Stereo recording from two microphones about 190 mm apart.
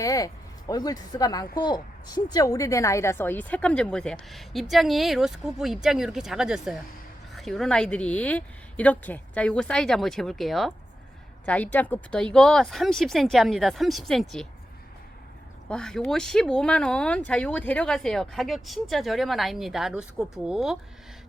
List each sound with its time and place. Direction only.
0.0 s a woman's voice: 20° left (ahead or behind); by 14.4 s centre (ahead or behind)
15.7 s a woman's voice: 5° left (ahead or behind)